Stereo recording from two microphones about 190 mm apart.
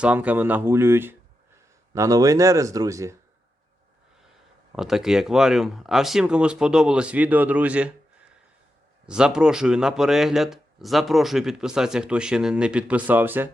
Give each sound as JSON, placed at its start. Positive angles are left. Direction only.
{"t": 0.0, "sound": "speech", "side_deg": -5}
{"t": 4.7, "sound": "speech", "side_deg": 0}
{"t": 9.0, "sound": "speech", "side_deg": -5}